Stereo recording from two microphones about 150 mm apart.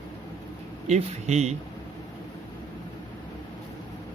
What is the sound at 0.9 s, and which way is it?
Speech, 50° right (ahead or behind).